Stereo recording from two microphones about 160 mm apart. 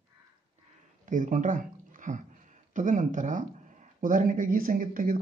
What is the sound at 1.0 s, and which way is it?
Speech, 55° right (ahead or behind).